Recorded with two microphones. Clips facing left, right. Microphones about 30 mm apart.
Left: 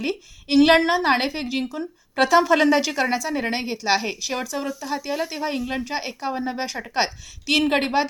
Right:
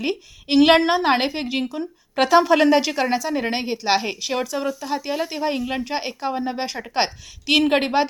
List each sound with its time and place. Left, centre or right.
0.0 s a woman's voice: centre